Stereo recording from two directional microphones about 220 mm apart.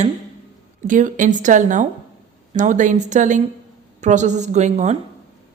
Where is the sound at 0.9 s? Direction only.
35° right (ahead or behind).